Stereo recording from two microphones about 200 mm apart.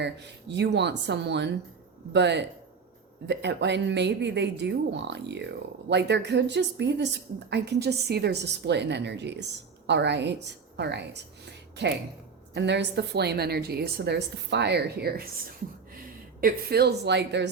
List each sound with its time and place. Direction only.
0.0 s a woman's voice: 60° right (ahead or behind)
16.4 s a woman's voice: 50° right (ahead or behind)